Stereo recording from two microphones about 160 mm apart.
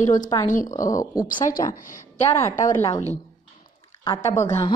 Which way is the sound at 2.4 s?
20° left (ahead or behind).